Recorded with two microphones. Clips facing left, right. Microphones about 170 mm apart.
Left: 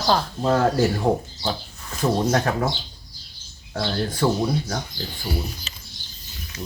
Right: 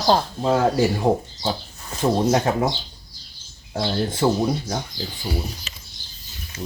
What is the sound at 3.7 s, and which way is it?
Speech, 20° right (ahead or behind).